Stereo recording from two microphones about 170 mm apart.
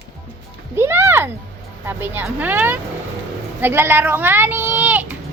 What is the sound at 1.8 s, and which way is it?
A child's voice, 10° right (ahead or behind).